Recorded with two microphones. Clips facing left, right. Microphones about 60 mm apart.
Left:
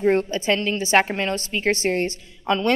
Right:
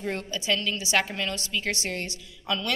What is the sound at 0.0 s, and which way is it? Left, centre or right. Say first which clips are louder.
A woman's voice: left 11 dB; left.